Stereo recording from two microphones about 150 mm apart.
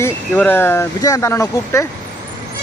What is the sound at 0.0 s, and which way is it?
Speech, 15° left (ahead or behind).